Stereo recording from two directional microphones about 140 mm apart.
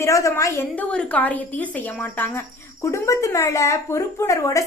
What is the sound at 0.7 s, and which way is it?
A woman's voice, 10° left (ahead or behind).